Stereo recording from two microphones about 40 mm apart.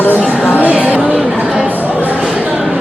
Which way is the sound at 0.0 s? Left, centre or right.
Left.